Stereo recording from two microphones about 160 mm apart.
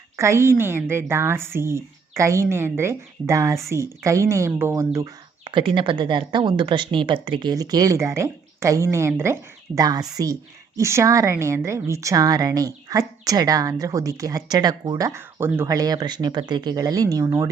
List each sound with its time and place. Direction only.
0.2 s a woman's voice: 15° right (ahead or behind)
5.5 s a woman's voice: 30° right (ahead or behind)